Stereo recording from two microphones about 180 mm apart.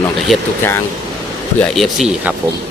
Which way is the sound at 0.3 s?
Centre (ahead or behind).